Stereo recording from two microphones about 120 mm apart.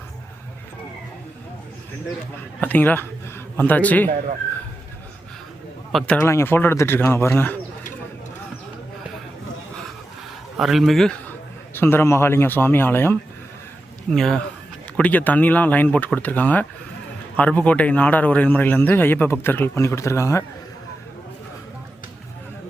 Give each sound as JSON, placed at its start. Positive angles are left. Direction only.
{"t": 2.6, "sound": "a man's voice", "side_deg": 10}
{"t": 5.9, "sound": "a man's voice", "side_deg": 5}
{"t": 6.2, "sound": "speech", "side_deg": 20}
{"t": 10.6, "sound": "a man's voice", "side_deg": 0}
{"t": 11.3, "sound": "a man's voice", "side_deg": 15}
{"t": 14.1, "sound": "a man's voice", "side_deg": 5}